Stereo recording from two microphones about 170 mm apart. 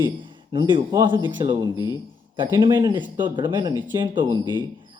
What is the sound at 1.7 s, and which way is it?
Speech, 20° left (ahead or behind).